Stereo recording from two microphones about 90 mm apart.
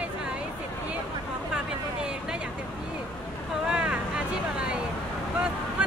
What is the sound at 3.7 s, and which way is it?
Vehicle, 10° right (ahead or behind).